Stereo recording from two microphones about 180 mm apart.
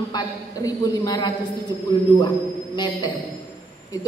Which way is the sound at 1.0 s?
20° left (ahead or behind).